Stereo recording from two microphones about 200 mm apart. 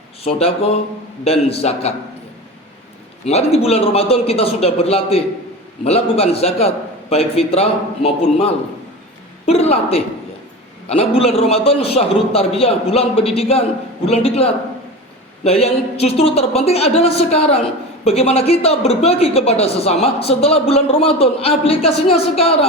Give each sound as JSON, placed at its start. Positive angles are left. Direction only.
{"t": 0.3, "sound": "speech", "side_deg": 30}
{"t": 3.2, "sound": "speech", "side_deg": 30}